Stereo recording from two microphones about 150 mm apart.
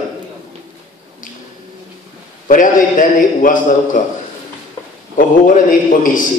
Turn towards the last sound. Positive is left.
turn(degrees=65)  # may be behind; listen again after turning